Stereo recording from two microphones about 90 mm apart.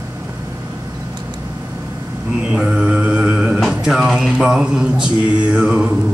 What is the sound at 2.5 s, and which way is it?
Mantra, 5° right (ahead or behind).